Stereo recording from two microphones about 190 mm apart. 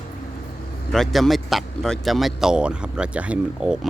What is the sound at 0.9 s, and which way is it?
Speech, centre (ahead or behind).